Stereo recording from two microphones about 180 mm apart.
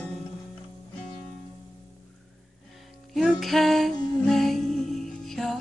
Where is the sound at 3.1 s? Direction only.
Centre (ahead or behind).